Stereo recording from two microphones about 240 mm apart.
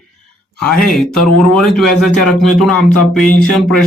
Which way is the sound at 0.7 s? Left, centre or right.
Left.